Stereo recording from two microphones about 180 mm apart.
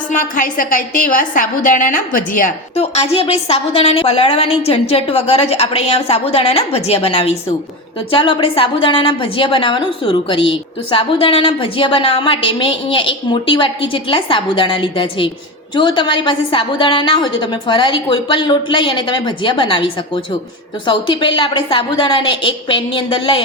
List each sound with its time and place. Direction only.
0.1 s a woman's voice: 50° left (ahead or behind)
2.7 s a woman's voice: 35° left (ahead or behind)